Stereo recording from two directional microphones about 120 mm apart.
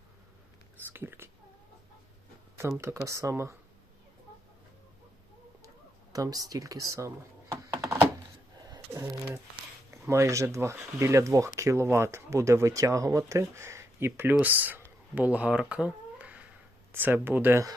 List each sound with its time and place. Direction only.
0.8 s speech: 15° right (ahead or behind)
2.6 s speech: 25° right (ahead or behind)
6.1 s speech: 30° right (ahead or behind)
7.5 s computer keyboard: 25° right (ahead or behind)
8.6 s a sound: 30° right (ahead or behind)
9.9 s speech: 25° right (ahead or behind)